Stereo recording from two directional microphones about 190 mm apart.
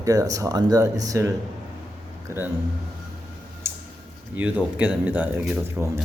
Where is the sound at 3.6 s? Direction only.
15° right (ahead or behind).